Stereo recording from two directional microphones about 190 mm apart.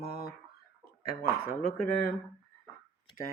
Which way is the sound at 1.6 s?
50° left (ahead or behind).